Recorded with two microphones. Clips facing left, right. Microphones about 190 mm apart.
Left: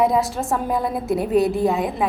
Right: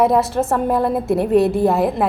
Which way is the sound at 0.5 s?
60° right (ahead or behind).